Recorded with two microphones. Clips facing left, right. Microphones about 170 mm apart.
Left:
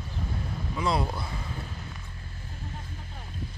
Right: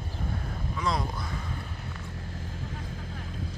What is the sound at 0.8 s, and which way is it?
Speech, 30° left (ahead or behind).